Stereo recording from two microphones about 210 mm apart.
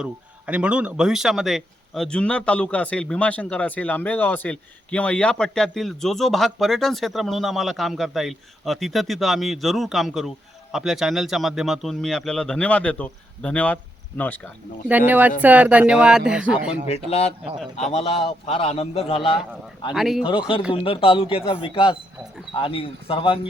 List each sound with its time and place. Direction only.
0.0 s speech: 5° right (ahead or behind)
14.8 s speech: 10° right (ahead or behind)
17.1 s a man's voice: 30° left (ahead or behind)
19.9 s speech: centre (ahead or behind)
20.2 s a man's voice: 25° left (ahead or behind)